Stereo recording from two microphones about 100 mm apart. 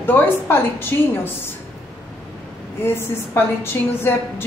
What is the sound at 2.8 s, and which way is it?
A woman's voice, 25° left (ahead or behind).